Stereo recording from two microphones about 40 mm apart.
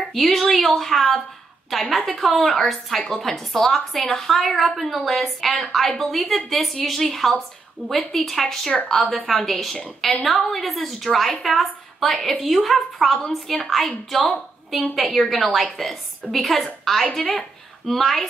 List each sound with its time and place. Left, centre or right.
0.1 s a woman's voice: centre